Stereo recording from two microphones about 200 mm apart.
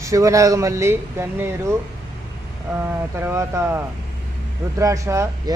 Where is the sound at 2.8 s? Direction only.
10° right (ahead or behind).